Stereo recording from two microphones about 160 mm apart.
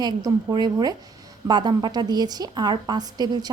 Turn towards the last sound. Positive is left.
turn(degrees=-25)  # may be behind; listen again after turning